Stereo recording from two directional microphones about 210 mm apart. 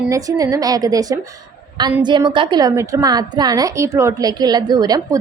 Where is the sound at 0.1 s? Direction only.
15° right (ahead or behind).